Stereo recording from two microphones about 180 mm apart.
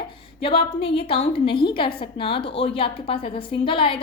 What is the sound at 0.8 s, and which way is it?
A woman's voice, 35° left (ahead or behind).